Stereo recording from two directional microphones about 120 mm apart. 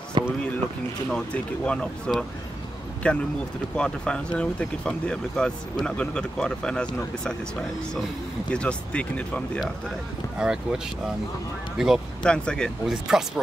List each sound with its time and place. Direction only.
0.2 s a sound: 40° right (ahead or behind)
1.1 s speech: 10° left (ahead or behind)
8.5 s speech: 10° left (ahead or behind)
10.4 s speech: 5° right (ahead or behind)
11.8 s speech: 5° right (ahead or behind)
12.2 s speech: 5° left (ahead or behind)
12.8 s speech: 5° right (ahead or behind)